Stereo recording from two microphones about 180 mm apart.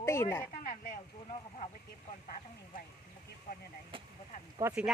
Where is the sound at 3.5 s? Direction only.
55° left (ahead or behind).